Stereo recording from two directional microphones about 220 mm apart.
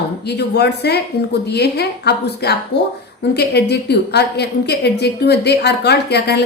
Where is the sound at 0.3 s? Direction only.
50° left (ahead or behind).